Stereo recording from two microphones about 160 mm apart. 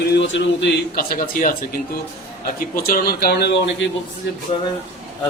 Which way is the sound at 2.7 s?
65° left (ahead or behind).